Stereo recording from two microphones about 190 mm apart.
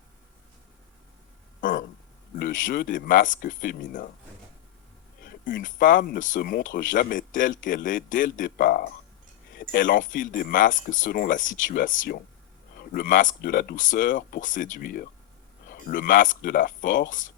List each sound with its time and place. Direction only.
2.4 s speech: 45° left (ahead or behind)
5.2 s speech: 50° left (ahead or behind)